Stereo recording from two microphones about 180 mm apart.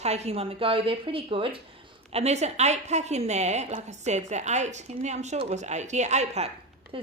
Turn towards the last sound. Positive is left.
turn(degrees=-30)  # may be behind; listen again after turning